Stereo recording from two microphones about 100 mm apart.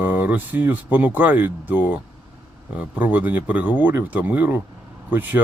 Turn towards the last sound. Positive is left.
turn(degrees=-20)  # may be behind; listen again after turning